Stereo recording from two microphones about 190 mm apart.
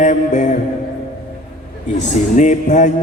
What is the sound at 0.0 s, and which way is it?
Music, 40° left (ahead or behind).